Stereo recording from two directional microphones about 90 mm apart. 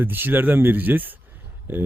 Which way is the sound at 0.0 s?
20° right (ahead or behind).